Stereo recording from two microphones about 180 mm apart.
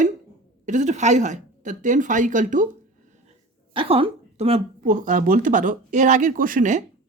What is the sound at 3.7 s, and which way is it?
Speech, 30° right (ahead or behind).